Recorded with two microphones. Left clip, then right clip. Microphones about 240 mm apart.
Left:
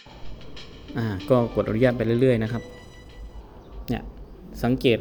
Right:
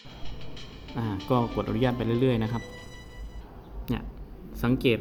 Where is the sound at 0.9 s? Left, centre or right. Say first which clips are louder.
Left 6 dB; centre.